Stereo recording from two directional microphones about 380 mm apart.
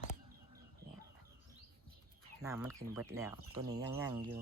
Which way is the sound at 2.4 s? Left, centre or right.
Centre.